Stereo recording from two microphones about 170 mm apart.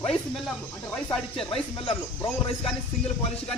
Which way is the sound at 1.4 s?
35° left (ahead or behind).